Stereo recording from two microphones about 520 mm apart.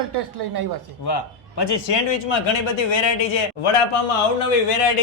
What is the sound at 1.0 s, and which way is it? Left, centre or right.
A man's voice, left.